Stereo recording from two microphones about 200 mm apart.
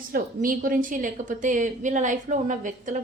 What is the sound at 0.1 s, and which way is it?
A woman's voice, 45° right (ahead or behind).